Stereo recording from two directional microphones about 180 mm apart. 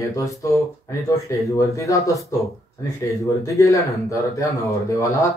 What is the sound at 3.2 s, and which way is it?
Speech, 20° left (ahead or behind).